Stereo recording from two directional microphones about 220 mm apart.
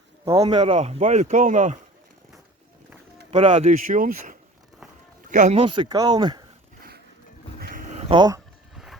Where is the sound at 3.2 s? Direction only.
25° right (ahead or behind).